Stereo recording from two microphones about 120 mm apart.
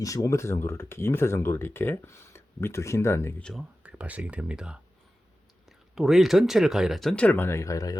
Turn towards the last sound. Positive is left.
turn(degrees=30)  # may be behind; listen again after turning